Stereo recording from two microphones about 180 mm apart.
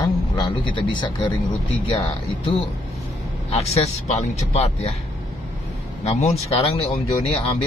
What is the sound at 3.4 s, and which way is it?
Speech, 35° left (ahead or behind).